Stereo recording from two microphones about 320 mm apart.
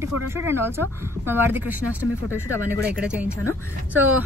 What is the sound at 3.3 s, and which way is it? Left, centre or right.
Speech, centre.